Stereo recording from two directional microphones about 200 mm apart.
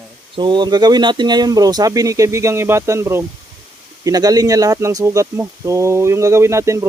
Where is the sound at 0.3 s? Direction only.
20° right (ahead or behind).